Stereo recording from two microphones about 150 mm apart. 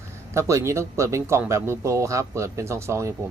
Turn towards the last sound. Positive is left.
turn(degrees=-20)  # may be behind; listen again after turning